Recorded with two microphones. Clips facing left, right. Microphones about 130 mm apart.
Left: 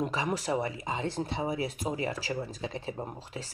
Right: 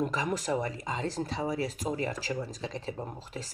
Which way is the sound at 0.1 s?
40° right (ahead or behind).